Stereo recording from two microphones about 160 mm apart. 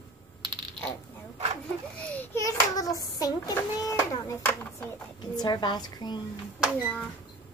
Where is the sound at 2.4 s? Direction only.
20° left (ahead or behind).